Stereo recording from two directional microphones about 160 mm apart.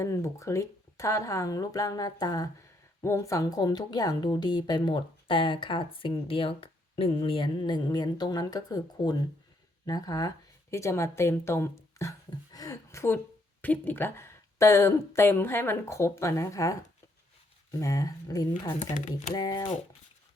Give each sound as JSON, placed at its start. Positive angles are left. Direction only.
{"t": 0.0, "sound": "a woman's voice", "side_deg": 20}
{"t": 12.5, "sound": "a sound", "side_deg": 20}
{"t": 13.6, "sound": "a woman's voice", "side_deg": 10}